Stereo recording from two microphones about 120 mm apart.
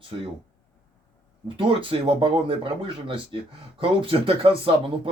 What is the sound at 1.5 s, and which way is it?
Speech, 45° right (ahead or behind).